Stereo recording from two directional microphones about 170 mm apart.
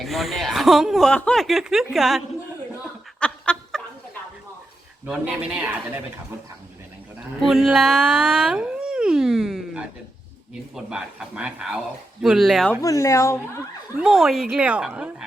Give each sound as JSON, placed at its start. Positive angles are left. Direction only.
{"t": 0.0, "sound": "speech", "side_deg": 0}
{"t": 3.2, "sound": "fowl", "side_deg": 5}
{"t": 5.0, "sound": "speech", "side_deg": -10}
{"t": 7.5, "sound": "speech", "side_deg": 0}
{"t": 12.8, "sound": "speech", "side_deg": 20}
{"t": 13.9, "sound": "speech", "side_deg": -5}